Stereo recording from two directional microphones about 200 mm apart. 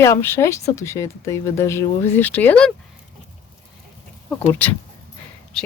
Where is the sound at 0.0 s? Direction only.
15° left (ahead or behind).